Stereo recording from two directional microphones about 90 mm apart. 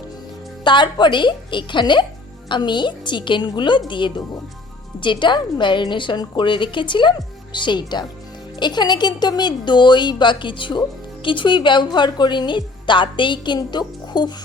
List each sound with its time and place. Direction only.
0.6 s a woman's voice: 60° left (ahead or behind)